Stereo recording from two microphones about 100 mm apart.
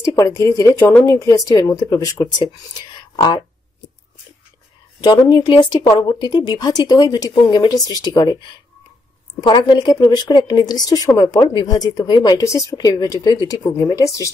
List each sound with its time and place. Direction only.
0.1 s speech: 35° left (ahead or behind)
3.2 s speech: 45° left (ahead or behind)
5.0 s speech: 50° left (ahead or behind); by 14.3 s 35° left (ahead or behind)